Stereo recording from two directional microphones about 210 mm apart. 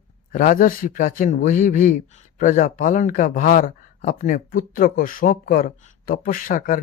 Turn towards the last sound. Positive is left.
turn(degrees=40)  # may be behind; listen again after turning